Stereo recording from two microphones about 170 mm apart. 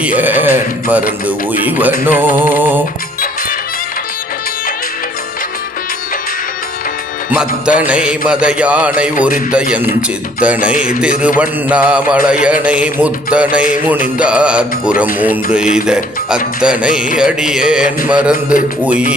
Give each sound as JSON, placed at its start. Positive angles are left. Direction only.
{"t": 0.0, "sound": "speech", "side_deg": -10}
{"t": 7.3, "sound": "speech", "side_deg": -5}
{"t": 12.3, "sound": "music", "side_deg": -5}
{"t": 12.6, "sound": "speech", "side_deg": -10}
{"t": 16.6, "sound": "music", "side_deg": -5}
{"t": 18.1, "sound": "speech", "side_deg": -5}